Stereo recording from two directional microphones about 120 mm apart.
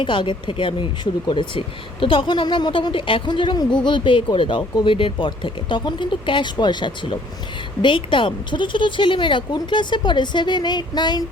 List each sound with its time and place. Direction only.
0.0 s a woman's voice: 45° left (ahead or behind)